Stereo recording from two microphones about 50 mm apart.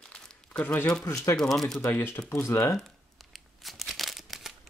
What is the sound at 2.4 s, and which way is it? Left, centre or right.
Speech, left.